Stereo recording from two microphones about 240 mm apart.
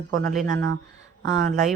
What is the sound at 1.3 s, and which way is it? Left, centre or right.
Speech, right.